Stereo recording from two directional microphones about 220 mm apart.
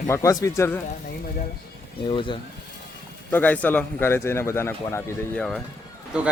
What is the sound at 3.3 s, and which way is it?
Speech, 5° left (ahead or behind).